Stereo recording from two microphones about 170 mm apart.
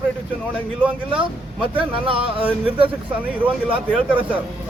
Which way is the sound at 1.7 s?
30° right (ahead or behind).